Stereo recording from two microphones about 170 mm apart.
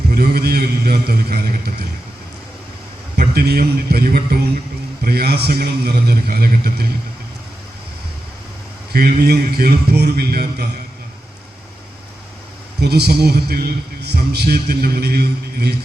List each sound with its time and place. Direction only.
0.1 s a man's voice: 65° right (ahead or behind)
3.3 s a man's voice: 65° right (ahead or behind)
8.9 s a man's voice: 60° right (ahead or behind)
12.8 s a man's voice: 70° right (ahead or behind)